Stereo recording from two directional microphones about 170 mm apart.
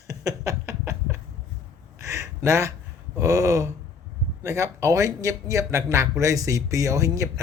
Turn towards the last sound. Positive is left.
turn(degrees=-20)  # may be behind; listen again after turning